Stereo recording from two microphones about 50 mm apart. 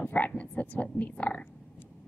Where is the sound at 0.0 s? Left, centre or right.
Left.